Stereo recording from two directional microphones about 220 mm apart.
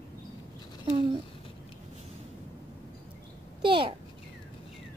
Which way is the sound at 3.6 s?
20° right (ahead or behind).